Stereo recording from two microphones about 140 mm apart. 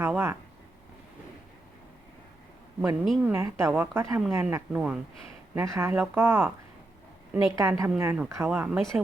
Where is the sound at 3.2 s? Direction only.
15° right (ahead or behind).